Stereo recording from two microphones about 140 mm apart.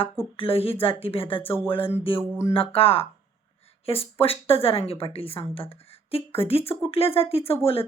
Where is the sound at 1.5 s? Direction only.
15° left (ahead or behind).